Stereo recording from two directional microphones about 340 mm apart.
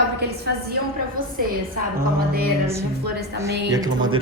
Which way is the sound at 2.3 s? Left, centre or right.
Right.